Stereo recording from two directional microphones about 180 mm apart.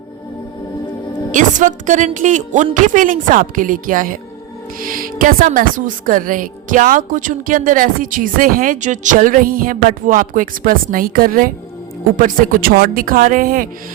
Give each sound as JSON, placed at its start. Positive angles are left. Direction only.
{"t": 1.3, "sound": "a woman's voice", "side_deg": -45}